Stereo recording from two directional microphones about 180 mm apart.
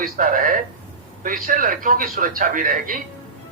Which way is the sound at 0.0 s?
50° right (ahead or behind).